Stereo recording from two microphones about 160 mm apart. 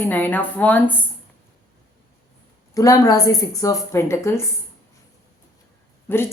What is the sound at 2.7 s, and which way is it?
A woman's voice, 20° left (ahead or behind).